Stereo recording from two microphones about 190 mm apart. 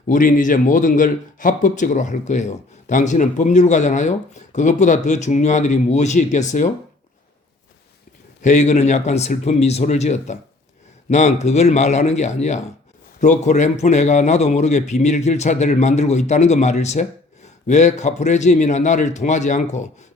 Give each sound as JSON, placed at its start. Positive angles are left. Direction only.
{"t": 0.1, "sound": "a man's voice", "side_deg": 45}
{"t": 8.4, "sound": "a man's voice", "side_deg": 40}